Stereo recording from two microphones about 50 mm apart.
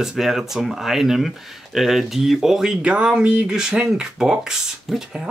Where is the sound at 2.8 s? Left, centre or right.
Right.